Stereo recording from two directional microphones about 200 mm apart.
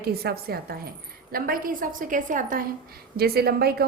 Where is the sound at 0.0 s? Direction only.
50° right (ahead or behind).